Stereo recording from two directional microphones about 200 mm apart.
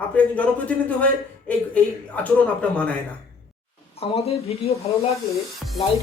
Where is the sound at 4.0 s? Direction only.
30° left (ahead or behind).